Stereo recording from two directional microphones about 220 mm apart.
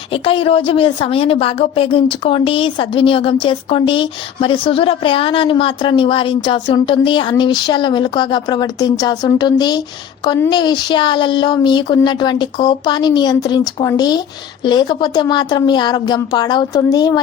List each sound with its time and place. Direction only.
0.1 s speech: 25° left (ahead or behind)